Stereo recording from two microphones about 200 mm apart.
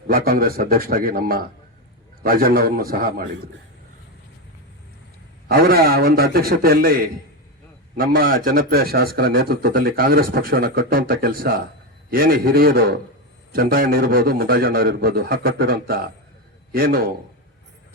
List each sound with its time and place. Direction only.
0.1 s speech: 45° right (ahead or behind)
5.5 s speech: 50° right (ahead or behind)